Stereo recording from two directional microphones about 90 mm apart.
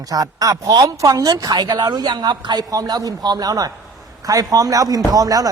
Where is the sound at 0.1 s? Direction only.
40° right (ahead or behind).